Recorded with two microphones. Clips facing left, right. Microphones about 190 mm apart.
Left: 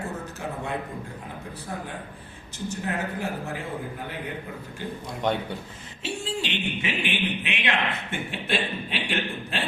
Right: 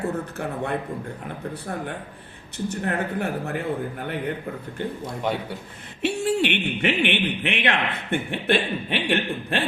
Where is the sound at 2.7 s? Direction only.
60° right (ahead or behind).